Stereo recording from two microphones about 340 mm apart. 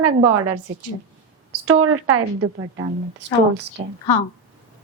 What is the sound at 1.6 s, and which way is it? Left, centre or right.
Speech, right.